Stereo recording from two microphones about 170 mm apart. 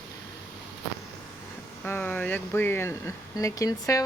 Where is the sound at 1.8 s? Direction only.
10° left (ahead or behind).